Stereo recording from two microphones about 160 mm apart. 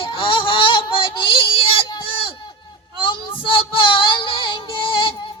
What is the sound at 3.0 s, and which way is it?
Child singing, 30° left (ahead or behind).